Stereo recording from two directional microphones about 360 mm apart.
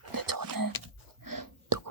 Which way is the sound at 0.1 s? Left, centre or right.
Right.